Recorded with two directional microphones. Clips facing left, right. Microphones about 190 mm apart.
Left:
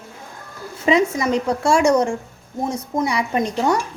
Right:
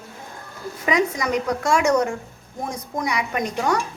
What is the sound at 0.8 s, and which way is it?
Speech, 25° left (ahead or behind).